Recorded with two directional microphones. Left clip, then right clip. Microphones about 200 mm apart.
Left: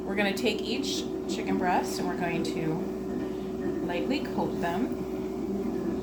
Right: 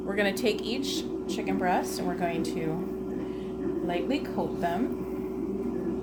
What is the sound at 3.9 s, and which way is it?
Speech, 40° right (ahead or behind).